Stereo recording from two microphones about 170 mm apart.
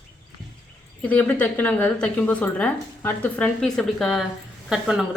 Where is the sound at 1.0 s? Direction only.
10° left (ahead or behind).